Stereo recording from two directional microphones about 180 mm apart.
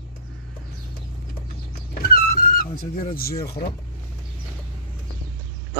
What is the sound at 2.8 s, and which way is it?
Speech, 55° left (ahead or behind).